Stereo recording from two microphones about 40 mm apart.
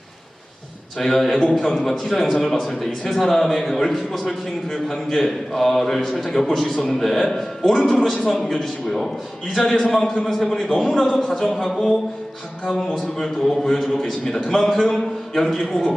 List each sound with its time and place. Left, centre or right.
1.0 s a man's voice: centre
14.6 s a man's voice: centre
14.8 s a man's voice: centre